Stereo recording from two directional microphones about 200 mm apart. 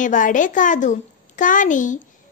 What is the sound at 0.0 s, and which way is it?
A woman's voice, 40° left (ahead or behind).